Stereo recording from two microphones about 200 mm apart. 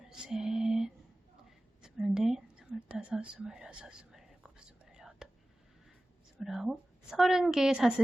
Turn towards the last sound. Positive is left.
turn(degrees=0)  # may be behind; listen again after turning